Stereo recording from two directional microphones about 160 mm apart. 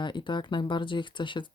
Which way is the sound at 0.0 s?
30° left (ahead or behind).